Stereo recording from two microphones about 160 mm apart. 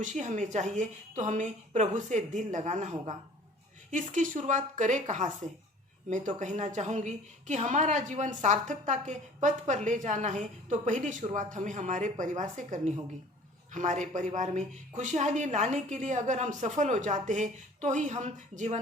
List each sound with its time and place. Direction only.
0.0 s a woman's voice: 50° right (ahead or behind)
3.9 s a woman's voice: 50° right (ahead or behind)